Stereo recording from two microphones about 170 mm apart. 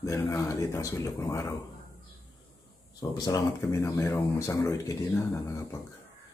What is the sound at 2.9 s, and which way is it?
Speech, 25° left (ahead or behind).